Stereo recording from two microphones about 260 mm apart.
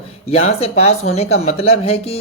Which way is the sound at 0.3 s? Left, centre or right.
Left.